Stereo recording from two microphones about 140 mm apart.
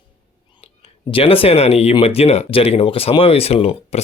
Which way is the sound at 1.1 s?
40° left (ahead or behind).